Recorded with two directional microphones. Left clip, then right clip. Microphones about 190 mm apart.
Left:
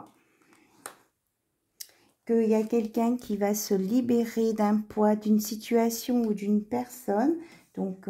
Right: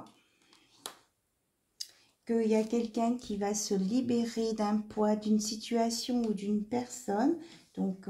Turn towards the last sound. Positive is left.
turn(degrees=40)  # may be behind; listen again after turning